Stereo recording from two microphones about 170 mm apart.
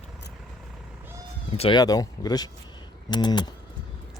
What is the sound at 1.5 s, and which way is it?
Speech, 30° left (ahead or behind).